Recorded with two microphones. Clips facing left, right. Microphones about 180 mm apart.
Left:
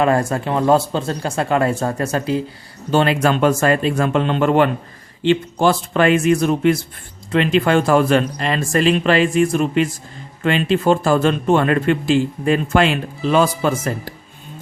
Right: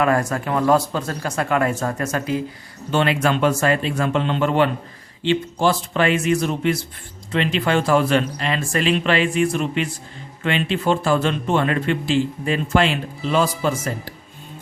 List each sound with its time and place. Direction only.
0.0 s speech: 30° left (ahead or behind); by 14.1 s 55° left (ahead or behind)